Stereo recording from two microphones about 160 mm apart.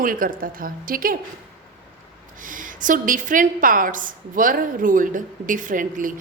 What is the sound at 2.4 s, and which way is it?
A woman's voice, 55° right (ahead or behind).